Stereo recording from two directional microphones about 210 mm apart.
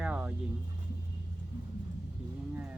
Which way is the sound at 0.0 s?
5° right (ahead or behind).